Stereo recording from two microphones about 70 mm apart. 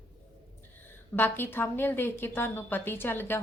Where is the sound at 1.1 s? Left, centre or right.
Left.